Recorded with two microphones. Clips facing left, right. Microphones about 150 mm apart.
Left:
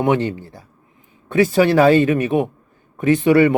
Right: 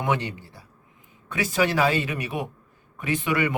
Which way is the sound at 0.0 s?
40° left (ahead or behind).